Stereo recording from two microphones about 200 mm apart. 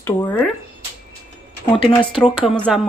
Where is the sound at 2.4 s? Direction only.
Centre (ahead or behind).